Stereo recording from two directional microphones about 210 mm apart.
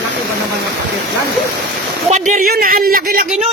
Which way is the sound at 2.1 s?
35° right (ahead or behind).